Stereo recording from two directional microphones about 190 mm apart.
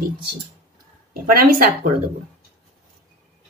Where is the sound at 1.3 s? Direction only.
50° right (ahead or behind).